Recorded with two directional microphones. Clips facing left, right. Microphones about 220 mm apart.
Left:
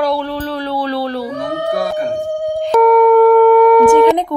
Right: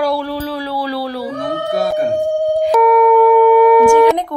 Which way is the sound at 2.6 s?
Centre (ahead or behind).